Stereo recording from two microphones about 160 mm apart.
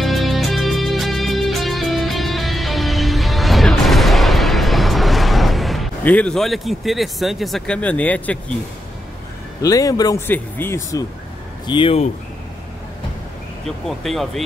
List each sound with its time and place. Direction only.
0.0 s music: centre (ahead or behind)
6.0 s speech: 5° left (ahead or behind)
9.6 s a man's voice: 20° left (ahead or behind)
11.6 s speech: 30° left (ahead or behind)
13.7 s speech: centre (ahead or behind)